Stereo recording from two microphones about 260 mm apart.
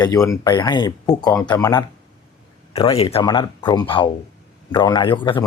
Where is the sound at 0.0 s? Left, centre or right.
Centre.